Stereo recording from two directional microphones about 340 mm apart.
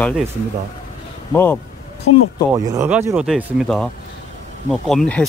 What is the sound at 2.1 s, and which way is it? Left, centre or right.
Speech, left.